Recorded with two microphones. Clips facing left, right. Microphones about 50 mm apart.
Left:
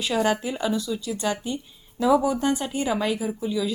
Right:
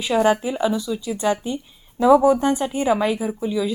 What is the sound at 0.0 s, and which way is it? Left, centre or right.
Speech, centre.